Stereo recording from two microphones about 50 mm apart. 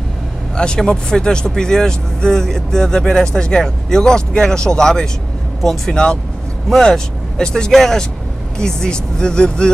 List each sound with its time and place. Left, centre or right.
0.6 s speech: centre